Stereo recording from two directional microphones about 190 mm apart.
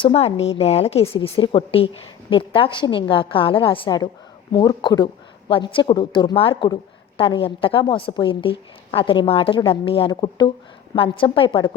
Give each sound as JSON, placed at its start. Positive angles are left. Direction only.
{"t": 0.0, "sound": "a woman's voice", "side_deg": 30}